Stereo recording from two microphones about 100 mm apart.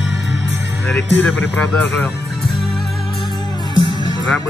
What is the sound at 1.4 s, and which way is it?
Speech, 20° left (ahead or behind).